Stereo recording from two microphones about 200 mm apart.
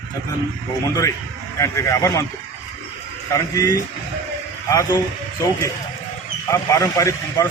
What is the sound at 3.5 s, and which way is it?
Speech, 15° left (ahead or behind).